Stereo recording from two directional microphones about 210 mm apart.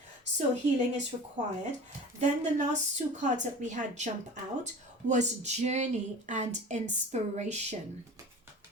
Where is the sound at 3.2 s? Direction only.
35° right (ahead or behind).